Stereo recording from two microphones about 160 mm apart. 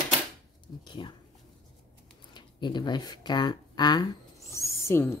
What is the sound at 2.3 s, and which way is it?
Speech, 30° left (ahead or behind).